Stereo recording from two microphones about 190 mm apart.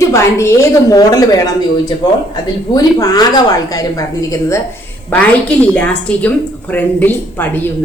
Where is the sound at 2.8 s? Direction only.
20° left (ahead or behind).